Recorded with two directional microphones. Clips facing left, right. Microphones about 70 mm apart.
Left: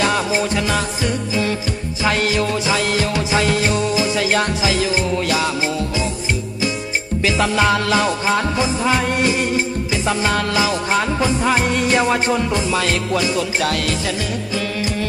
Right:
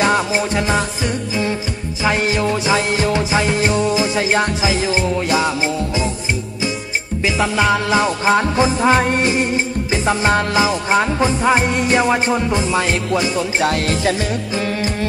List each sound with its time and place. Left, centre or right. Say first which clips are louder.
0.0 s music: right 2 dB; right
7.2 s music: even; centre
8.0 s music: right 3 dB; right